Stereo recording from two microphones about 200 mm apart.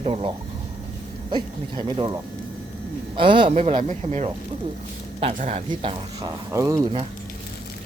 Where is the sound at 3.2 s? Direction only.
25° right (ahead or behind).